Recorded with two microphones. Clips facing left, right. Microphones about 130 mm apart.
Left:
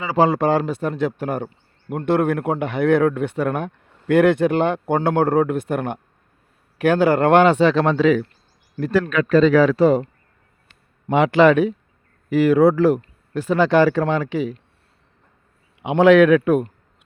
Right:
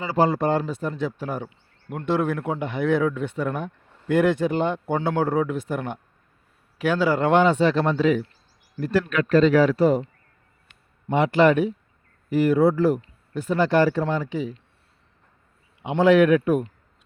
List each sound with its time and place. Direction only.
0.2 s a man's voice: 90° left; by 1.5 s 60° left (ahead or behind)
1.5 s a sound: 40° left (ahead or behind)
2.0 s a man's voice: 55° left (ahead or behind); by 8.2 s 90° left
8.8 s speech: 55° left (ahead or behind)
9.7 s speech: 90° left
11.1 s speech: 90° left
15.8 s speech: 80° left